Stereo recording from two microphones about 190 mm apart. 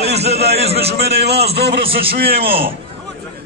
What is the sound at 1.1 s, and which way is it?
Speech, 60° right (ahead or behind).